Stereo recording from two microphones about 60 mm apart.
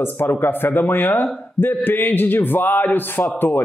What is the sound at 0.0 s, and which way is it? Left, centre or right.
A man's voice, left.